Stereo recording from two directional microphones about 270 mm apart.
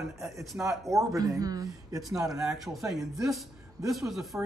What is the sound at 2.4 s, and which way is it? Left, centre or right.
Speech, centre.